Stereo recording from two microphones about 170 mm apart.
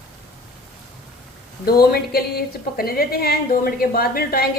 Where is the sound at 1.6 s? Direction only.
65° left (ahead or behind).